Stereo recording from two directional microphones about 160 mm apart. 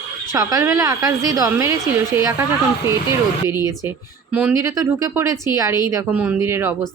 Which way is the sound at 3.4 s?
20° right (ahead or behind).